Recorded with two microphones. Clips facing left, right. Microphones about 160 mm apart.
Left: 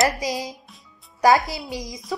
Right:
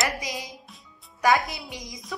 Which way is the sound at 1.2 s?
35° left (ahead or behind).